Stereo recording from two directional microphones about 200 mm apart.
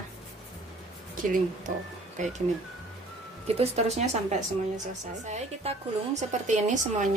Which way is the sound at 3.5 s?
30° right (ahead or behind).